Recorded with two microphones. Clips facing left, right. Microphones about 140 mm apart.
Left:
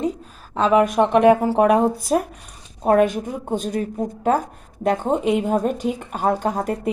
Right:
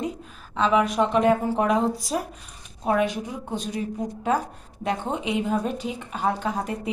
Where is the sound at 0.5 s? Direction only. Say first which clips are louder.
Left 5 dB; 45° left (ahead or behind).